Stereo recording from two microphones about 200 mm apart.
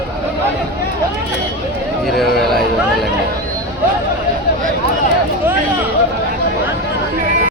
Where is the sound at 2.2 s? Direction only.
Centre (ahead or behind).